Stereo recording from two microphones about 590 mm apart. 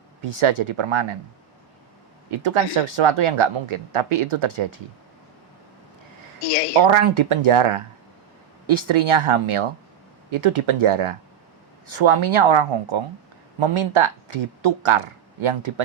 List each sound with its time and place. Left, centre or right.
0.2 s speech: right
2.4 s speech: right
6.7 s speech: right
8.6 s speech: right